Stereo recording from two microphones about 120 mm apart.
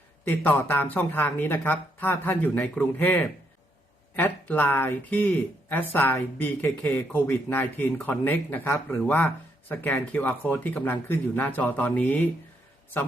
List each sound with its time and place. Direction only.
0.3 s speech: 15° left (ahead or behind)